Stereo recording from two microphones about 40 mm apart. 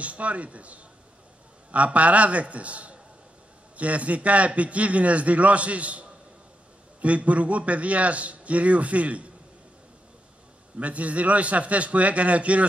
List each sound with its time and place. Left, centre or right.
0.0 s a man's voice: right
10.8 s a man's voice: right